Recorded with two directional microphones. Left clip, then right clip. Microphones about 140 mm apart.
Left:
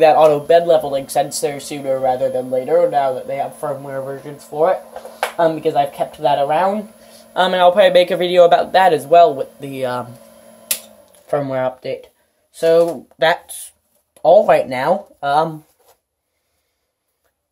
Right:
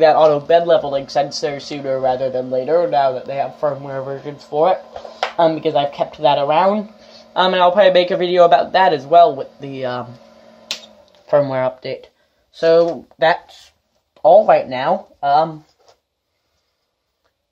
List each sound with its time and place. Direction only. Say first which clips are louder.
0.0 s a man's voice: left 1 dB; 15° left (ahead or behind)
0.7 s speech: even; 5° left (ahead or behind)
1.9 s speech: left 1 dB; 5° right (ahead or behind)
7.0 s a man's voice: even; 5° right (ahead or behind); by 10.0 s 20° left (ahead or behind)
11.1 s speech: right 5 dB; 5° right (ahead or behind)
13.2 s a man's voice: even; 10° left (ahead or behind)
14.2 s speech: right 1 dB; 20° left (ahead or behind); by 15.4 s 35° left (ahead or behind)